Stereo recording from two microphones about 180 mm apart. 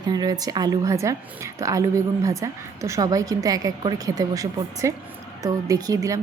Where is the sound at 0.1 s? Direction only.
20° right (ahead or behind).